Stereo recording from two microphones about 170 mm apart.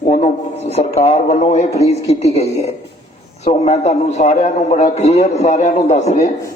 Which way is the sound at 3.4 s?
40° left (ahead or behind).